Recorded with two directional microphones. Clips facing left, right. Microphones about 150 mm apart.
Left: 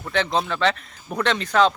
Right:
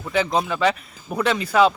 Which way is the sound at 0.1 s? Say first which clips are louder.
Right 2 dB; 5° right (ahead or behind).